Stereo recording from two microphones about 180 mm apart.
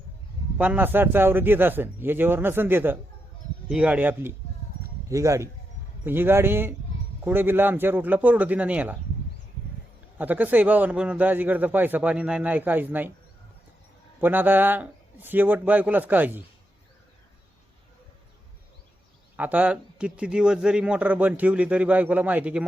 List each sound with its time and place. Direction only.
0.6 s a man's voice: 10° right (ahead or behind)
10.2 s a man's voice: 10° right (ahead or behind)
14.2 s a man's voice: 10° right (ahead or behind)
19.4 s a man's voice: 10° right (ahead or behind)